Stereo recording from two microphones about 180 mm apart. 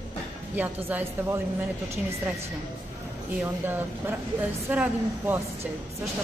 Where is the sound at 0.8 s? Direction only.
15° right (ahead or behind).